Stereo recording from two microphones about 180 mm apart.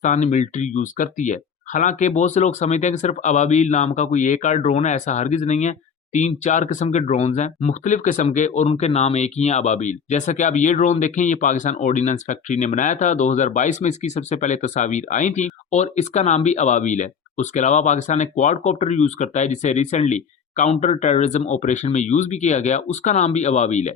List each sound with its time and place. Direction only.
0.0 s speech: 40° left (ahead or behind)